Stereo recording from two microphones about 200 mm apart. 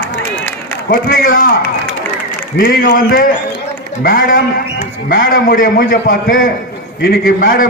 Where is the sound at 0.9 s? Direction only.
45° left (ahead or behind).